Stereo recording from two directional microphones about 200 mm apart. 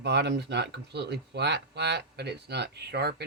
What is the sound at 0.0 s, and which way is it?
Speech, 60° right (ahead or behind).